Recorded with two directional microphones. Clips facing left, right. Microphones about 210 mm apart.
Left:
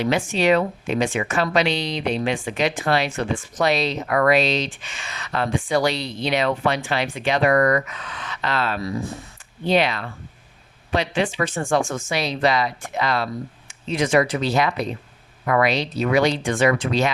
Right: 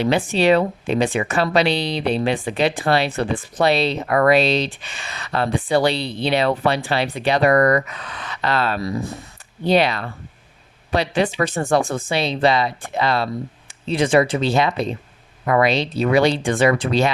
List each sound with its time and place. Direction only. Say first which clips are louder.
0.0 s speech: right 3 dB; 35° right (ahead or behind)